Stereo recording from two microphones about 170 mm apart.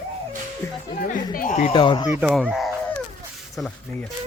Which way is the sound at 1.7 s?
30° left (ahead or behind).